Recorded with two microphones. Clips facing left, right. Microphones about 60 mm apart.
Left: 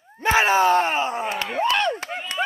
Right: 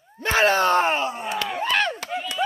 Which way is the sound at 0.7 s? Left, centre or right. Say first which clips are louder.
Left 1 dB; centre.